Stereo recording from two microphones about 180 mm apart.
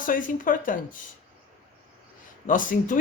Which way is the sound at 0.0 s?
50° left (ahead or behind).